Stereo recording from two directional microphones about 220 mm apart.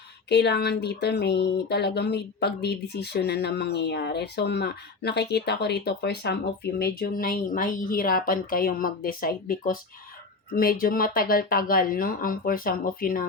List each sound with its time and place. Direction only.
0.3 s speech: 50° left (ahead or behind)